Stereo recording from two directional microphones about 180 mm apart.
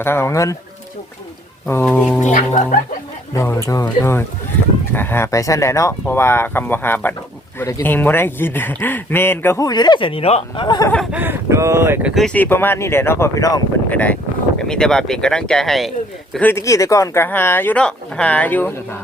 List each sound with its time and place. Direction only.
0.0 s speech: 15° left (ahead or behind)
1.6 s speech: 10° left (ahead or behind)
2.2 s speech: 40° left (ahead or behind)
3.3 s speech: 15° left (ahead or behind)
11.1 s speech: 10° right (ahead or behind)
12.1 s speech: 5° left (ahead or behind)